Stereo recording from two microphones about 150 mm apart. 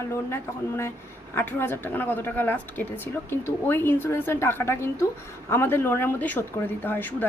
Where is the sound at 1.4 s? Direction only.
15° left (ahead or behind).